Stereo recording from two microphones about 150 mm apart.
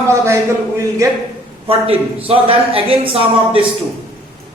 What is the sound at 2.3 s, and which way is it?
Speech, 40° right (ahead or behind).